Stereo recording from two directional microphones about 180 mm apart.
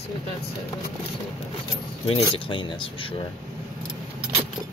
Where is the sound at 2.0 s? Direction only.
30° left (ahead or behind).